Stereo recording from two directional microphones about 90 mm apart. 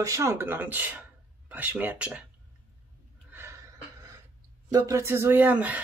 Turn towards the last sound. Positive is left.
turn(degrees=-20)  # may be behind; listen again after turning